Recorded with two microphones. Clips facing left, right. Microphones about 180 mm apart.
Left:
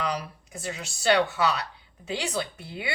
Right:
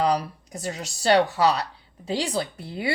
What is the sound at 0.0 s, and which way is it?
Speech, 35° right (ahead or behind).